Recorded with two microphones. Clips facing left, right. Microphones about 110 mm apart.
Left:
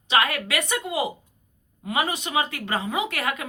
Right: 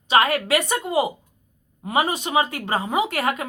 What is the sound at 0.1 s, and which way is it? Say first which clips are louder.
Speech: right 5 dB; 35° right (ahead or behind).